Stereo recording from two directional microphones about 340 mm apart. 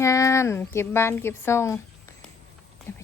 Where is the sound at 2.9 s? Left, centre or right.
Centre.